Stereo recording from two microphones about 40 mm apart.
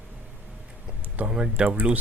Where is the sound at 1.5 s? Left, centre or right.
Right.